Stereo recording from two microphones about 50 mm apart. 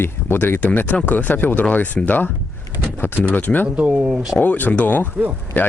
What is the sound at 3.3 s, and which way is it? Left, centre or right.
Speech, left.